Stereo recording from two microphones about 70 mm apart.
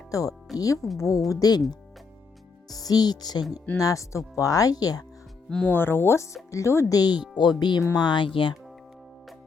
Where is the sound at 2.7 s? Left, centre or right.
Left.